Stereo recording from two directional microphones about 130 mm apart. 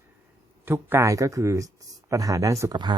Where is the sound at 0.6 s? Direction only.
15° right (ahead or behind).